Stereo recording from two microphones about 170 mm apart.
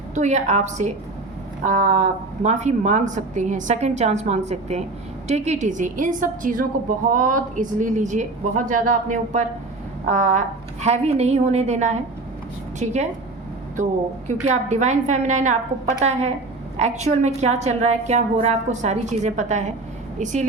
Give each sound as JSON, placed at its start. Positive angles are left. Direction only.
{"t": 0.1, "sound": "a woman's voice", "side_deg": -45}
{"t": 14.3, "sound": "a woman's voice", "side_deg": -45}